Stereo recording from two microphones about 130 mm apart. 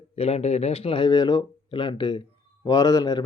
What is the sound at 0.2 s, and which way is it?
Speech, 55° left (ahead or behind).